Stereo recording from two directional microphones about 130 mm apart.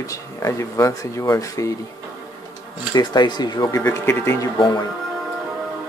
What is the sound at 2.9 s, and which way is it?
Speech, 35° left (ahead or behind).